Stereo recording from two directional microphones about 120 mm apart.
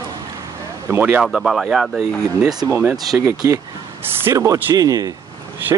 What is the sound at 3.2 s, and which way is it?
Speech, 25° right (ahead or behind).